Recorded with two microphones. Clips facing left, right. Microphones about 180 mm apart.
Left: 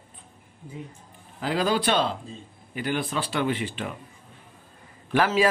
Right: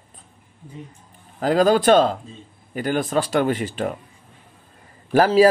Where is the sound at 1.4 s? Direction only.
45° right (ahead or behind).